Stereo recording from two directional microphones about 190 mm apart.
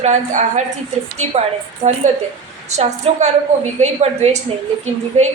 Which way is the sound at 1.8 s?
35° right (ahead or behind).